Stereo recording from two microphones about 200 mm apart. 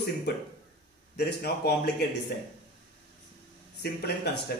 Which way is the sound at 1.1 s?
55° left (ahead or behind).